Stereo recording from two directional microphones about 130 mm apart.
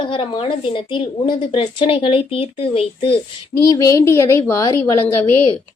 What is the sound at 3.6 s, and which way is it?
A woman's voice, 25° left (ahead or behind).